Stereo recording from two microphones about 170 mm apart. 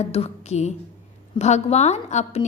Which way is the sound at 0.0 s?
40° left (ahead or behind).